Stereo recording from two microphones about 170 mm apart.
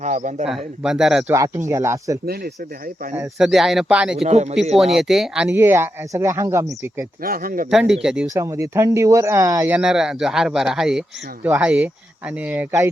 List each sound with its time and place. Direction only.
0.0 s speech: 45° right (ahead or behind)
0.4 s speech: 5° right (ahead or behind)
1.3 s speech: 20° right (ahead or behind)
2.2 s speech: 65° right (ahead or behind)
3.3 s speech: centre (ahead or behind)
4.3 s speech: 40° right (ahead or behind)
4.9 s speech: centre (ahead or behind)
7.2 s speech: 60° right (ahead or behind)
7.7 s speech: 5° right (ahead or behind)
8.3 s speech: 15° right (ahead or behind)